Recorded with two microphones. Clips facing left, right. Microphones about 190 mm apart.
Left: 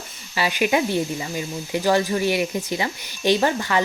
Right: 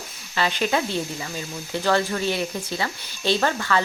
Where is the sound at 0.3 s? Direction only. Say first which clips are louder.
Left 2 dB; 10° left (ahead or behind).